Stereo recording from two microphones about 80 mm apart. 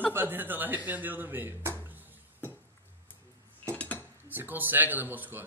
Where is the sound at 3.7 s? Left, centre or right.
Centre.